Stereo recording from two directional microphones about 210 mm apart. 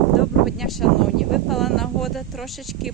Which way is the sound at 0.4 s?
Centre (ahead or behind).